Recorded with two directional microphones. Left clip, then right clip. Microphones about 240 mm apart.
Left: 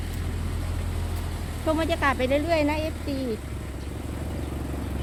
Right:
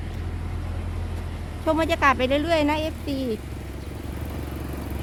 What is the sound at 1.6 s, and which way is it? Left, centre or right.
Speech, centre.